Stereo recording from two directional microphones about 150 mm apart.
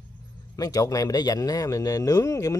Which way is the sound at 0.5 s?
25° left (ahead or behind).